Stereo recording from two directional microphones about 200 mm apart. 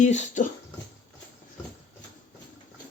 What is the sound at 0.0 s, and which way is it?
Speech, 35° left (ahead or behind).